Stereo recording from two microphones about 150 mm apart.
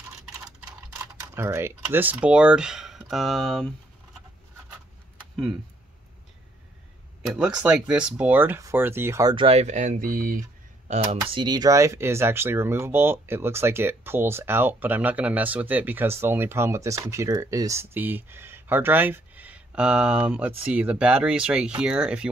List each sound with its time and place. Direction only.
1.3 s speech: 15° right (ahead or behind); by 3.6 s centre (ahead or behind)
7.2 s speech: 5° right (ahead or behind)
9.3 s speech: 40° right (ahead or behind); by 10.4 s 65° right (ahead or behind)
11.1 s speech: 30° right (ahead or behind); by 22.3 s 5° right (ahead or behind)